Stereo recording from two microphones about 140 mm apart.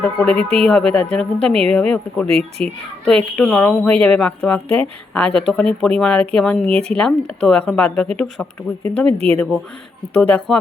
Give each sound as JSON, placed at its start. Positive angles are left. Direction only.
{"t": 0.2, "sound": "speech", "side_deg": 5}
{"t": 9.1, "sound": "speech", "side_deg": -45}
{"t": 10.2, "sound": "speech", "side_deg": 5}